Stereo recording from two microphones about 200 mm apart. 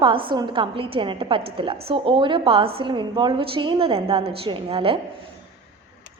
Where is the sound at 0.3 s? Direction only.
25° right (ahead or behind).